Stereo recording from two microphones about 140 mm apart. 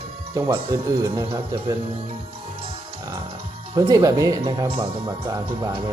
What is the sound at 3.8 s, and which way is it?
Speech, 25° right (ahead or behind).